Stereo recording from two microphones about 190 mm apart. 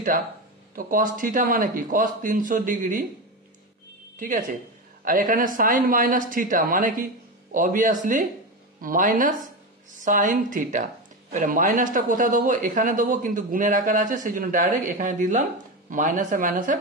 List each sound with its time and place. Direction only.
0.7 s a man's voice: 45° right (ahead or behind)
4.2 s a man's voice: 45° right (ahead or behind)